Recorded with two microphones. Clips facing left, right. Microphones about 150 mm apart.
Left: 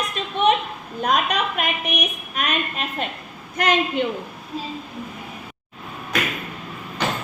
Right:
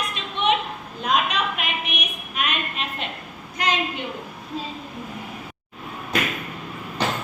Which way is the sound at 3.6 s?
55° left (ahead or behind).